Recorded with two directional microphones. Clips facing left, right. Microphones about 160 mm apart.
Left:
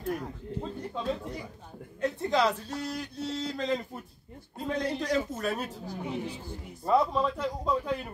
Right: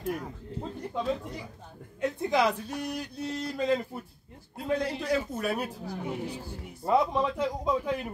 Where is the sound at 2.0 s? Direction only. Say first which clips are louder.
Right 1 dB; 15° right (ahead or behind).